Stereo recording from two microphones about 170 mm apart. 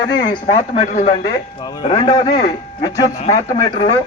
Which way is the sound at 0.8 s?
45° left (ahead or behind).